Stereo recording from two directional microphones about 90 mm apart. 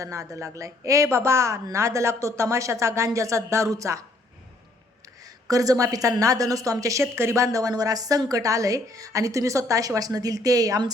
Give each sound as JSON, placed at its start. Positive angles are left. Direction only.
{"t": 0.0, "sound": "a woman's voice", "side_deg": -35}
{"t": 5.5, "sound": "a woman's voice", "side_deg": -40}